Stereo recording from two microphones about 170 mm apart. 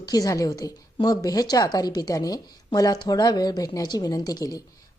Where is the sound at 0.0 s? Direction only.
20° left (ahead or behind).